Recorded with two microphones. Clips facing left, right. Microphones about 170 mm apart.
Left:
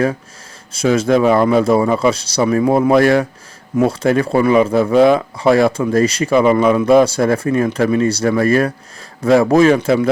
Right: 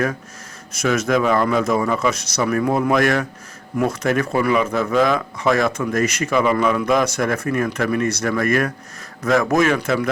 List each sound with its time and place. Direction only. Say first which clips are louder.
0.7 s speech: left 5 dB; 30° left (ahead or behind)